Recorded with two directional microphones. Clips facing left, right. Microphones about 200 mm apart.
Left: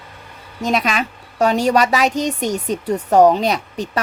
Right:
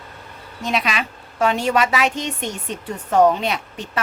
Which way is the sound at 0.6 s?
45° left (ahead or behind).